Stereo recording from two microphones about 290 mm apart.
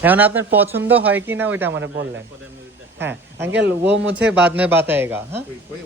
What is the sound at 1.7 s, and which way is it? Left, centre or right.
A man's voice, right.